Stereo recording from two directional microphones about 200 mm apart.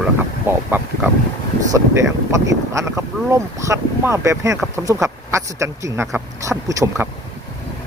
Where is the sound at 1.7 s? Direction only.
15° right (ahead or behind).